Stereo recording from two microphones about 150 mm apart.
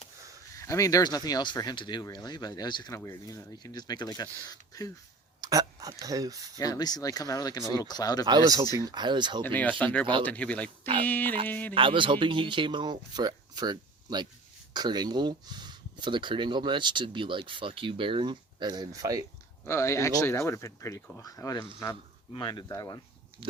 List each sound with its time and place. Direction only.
0.5 s speech: 20° left (ahead or behind)
5.4 s speech: 25° right (ahead or behind)
6.6 s speech: 25° left (ahead or behind)
8.3 s speech: 25° right (ahead or behind)
9.4 s speech: 10° left (ahead or behind)
11.7 s speech: 35° right (ahead or behind)
19.6 s speech: 20° left (ahead or behind)
23.4 s speech: 35° right (ahead or behind)